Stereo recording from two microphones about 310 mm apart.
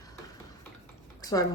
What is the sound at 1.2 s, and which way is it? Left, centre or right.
Speech, centre.